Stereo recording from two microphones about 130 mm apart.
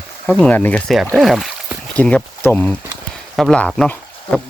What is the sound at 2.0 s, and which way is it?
Speech, 10° left (ahead or behind).